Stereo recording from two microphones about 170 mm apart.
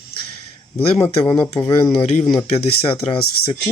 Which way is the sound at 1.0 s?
10° left (ahead or behind).